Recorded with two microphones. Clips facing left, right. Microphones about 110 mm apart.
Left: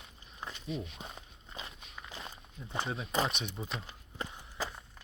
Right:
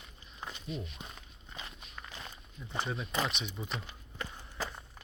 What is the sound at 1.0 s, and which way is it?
Walk, 30° left (ahead or behind).